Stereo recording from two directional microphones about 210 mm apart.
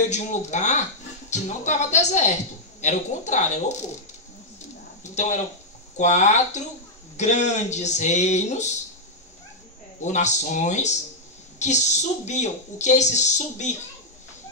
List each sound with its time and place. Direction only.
0.1 s a woman's voice: 35° left (ahead or behind)
5.1 s a woman's voice: 35° left (ahead or behind)
10.0 s a woman's voice: 35° left (ahead or behind)